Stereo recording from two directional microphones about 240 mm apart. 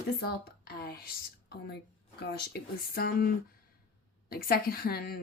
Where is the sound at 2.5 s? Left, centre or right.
Left.